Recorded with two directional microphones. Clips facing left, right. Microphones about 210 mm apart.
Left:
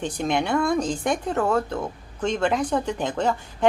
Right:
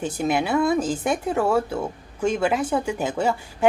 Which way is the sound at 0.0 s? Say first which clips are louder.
Right 1 dB; 5° right (ahead or behind).